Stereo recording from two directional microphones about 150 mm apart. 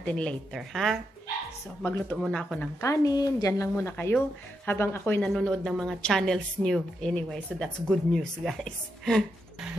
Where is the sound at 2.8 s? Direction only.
20° left (ahead or behind).